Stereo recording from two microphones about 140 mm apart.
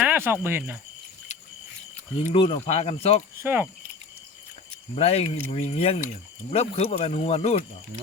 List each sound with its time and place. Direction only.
0.0 s a sound: 15° right (ahead or behind)
0.4 s speech: 15° right (ahead or behind)
2.3 s speech: 40° left (ahead or behind)
3.4 s speech: 15° right (ahead or behind)
4.9 s speech: 45° left (ahead or behind)